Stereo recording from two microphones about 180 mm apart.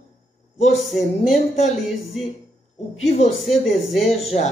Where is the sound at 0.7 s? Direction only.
Centre (ahead or behind).